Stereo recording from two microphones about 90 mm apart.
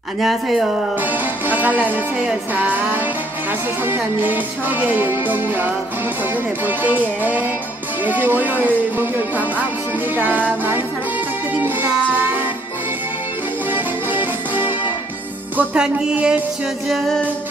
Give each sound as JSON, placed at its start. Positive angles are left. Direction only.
{"t": 0.2, "sound": "speech", "side_deg": 0}
{"t": 1.5, "sound": "music", "side_deg": -20}
{"t": 10.1, "sound": "music", "side_deg": -20}
{"t": 11.5, "sound": "music", "side_deg": -20}
{"t": 14.1, "sound": "music", "side_deg": -20}
{"t": 16.9, "sound": "speech", "side_deg": 0}